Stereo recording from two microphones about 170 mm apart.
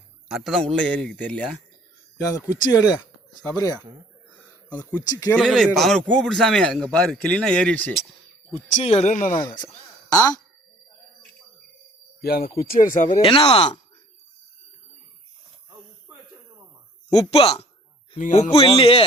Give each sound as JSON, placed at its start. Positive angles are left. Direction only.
{"t": 0.3, "sound": "a man's voice", "side_deg": 0}
{"t": 2.1, "sound": "speech", "side_deg": 20}
{"t": 5.4, "sound": "speech", "side_deg": 0}
{"t": 8.8, "sound": "speech", "side_deg": 35}
{"t": 9.4, "sound": "speech", "side_deg": 25}
{"t": 12.2, "sound": "speech", "side_deg": 60}
{"t": 13.2, "sound": "speech", "side_deg": 35}
{"t": 17.1, "sound": "speech", "side_deg": 35}
{"t": 18.2, "sound": "speech", "side_deg": 50}